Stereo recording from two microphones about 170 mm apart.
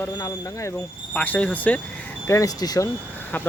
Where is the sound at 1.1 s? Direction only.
10° left (ahead or behind).